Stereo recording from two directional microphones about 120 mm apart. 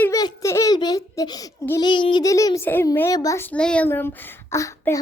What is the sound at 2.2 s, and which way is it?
Speech, 30° left (ahead or behind).